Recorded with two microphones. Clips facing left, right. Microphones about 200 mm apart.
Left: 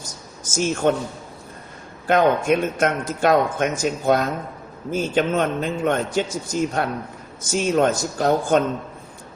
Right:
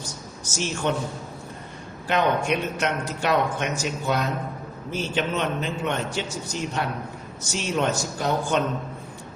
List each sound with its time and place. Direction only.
0.5 s speech: 45° left (ahead or behind)
2.0 s speech: 45° left (ahead or behind)